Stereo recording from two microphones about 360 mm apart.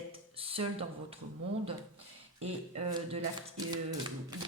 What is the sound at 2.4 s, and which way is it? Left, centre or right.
Speech, centre.